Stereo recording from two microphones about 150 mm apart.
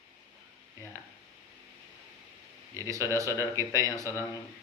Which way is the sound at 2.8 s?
20° right (ahead or behind).